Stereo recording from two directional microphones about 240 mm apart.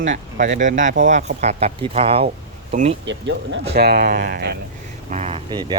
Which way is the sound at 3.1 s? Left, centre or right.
Right.